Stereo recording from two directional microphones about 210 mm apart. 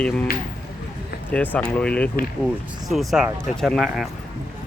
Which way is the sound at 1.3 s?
5° left (ahead or behind).